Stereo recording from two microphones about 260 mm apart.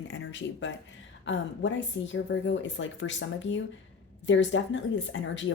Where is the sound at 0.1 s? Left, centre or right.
Left.